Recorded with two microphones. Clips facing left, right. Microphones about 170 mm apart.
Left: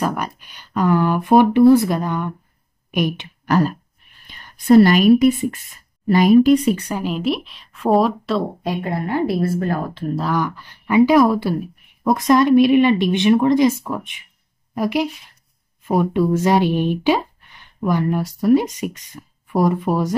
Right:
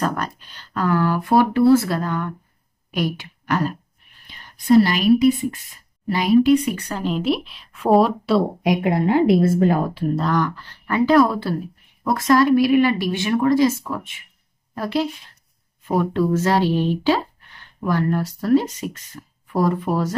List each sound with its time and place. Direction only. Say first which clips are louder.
0.0 s speech: left 1 dB; 10° left (ahead or behind)
4.3 s a woman's voice: left 3 dB; 50° left (ahead or behind)
6.5 s speech: left 2 dB; 25° left (ahead or behind)
6.9 s a woman's voice: even; 10° left (ahead or behind); by 9.8 s 20° right (ahead or behind)
9.9 s speech: right 1 dB; 5° right (ahead or behind)